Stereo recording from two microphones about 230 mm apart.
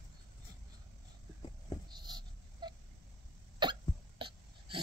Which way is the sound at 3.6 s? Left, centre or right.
Centre.